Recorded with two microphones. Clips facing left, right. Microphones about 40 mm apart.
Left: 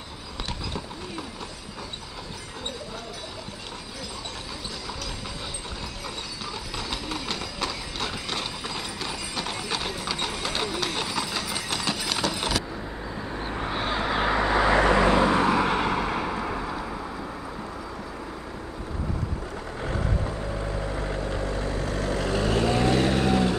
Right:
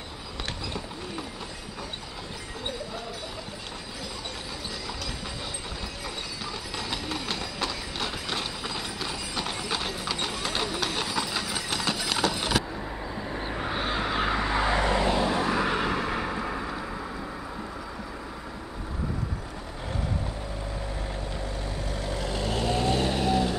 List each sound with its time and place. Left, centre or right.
6.9 s clip-clop: centre
12.3 s keys jangling: centre
13.3 s vehicle: centre
14.4 s vehicle: left
14.7 s vehicle: left
15.2 s vehicle: left
15.5 s vehicle: centre
20.9 s vehicle: left